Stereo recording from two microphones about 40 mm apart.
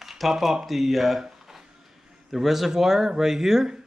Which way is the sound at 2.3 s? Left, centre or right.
Centre.